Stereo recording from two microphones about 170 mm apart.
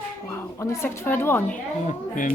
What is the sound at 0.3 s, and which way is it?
A woman's voice, 15° left (ahead or behind).